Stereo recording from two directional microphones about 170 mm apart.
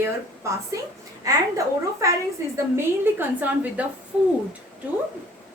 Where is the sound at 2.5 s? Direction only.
15° right (ahead or behind).